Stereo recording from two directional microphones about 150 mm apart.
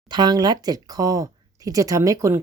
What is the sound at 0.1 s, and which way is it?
A woman's voice, 30° right (ahead or behind).